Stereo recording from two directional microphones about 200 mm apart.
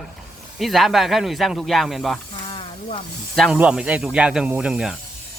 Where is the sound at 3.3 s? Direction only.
Centre (ahead or behind).